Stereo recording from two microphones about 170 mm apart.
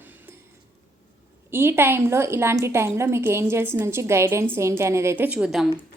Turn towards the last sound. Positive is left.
turn(degrees=-5)  # may be behind; listen again after turning